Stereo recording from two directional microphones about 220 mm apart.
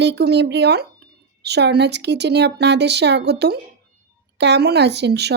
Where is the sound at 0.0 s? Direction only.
50° right (ahead or behind).